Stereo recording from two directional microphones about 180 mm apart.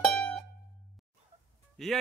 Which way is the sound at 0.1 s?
5° left (ahead or behind).